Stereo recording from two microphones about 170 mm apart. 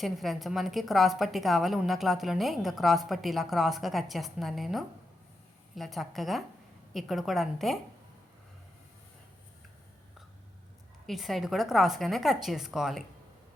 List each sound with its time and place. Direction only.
0.0 s a woman's voice: centre (ahead or behind)
11.0 s a woman's voice: centre (ahead or behind)